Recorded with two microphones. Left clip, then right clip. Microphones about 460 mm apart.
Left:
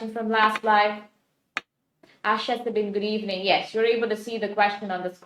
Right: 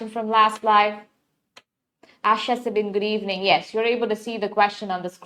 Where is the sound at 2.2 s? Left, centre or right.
Right.